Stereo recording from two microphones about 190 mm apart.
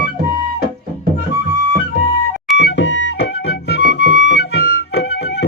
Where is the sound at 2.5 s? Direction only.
70° left (ahead or behind).